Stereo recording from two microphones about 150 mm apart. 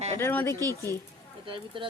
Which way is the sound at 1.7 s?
35° right (ahead or behind).